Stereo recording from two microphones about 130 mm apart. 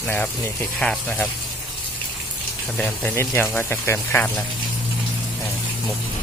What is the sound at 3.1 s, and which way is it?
Speech, 15° left (ahead or behind).